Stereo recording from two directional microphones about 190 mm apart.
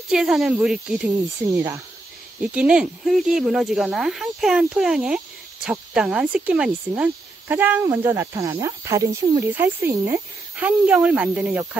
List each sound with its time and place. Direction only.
0.1 s speech: centre (ahead or behind)